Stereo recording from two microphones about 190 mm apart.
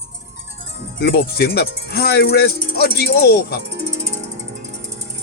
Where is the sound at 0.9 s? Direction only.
55° left (ahead or behind).